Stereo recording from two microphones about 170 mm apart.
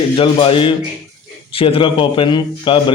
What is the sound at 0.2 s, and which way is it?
A man's voice, 30° left (ahead or behind).